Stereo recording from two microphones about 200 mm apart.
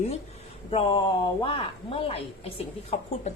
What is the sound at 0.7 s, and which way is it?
A woman's voice, 25° left (ahead or behind).